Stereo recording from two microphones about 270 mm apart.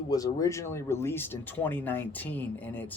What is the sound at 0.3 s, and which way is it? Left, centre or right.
Speech, centre.